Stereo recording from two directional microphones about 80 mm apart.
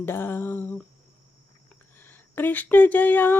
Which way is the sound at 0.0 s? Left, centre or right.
Left.